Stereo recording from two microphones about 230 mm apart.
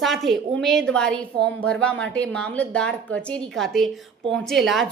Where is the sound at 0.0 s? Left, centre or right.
Centre.